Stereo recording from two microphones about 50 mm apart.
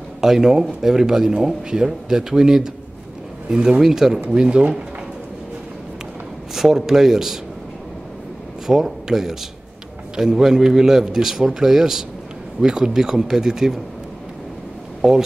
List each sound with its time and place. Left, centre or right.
0.2 s a man's voice: centre
4.3 s speech: centre
6.5 s a man's voice: centre
8.6 s a man's voice: centre
15.0 s speech: centre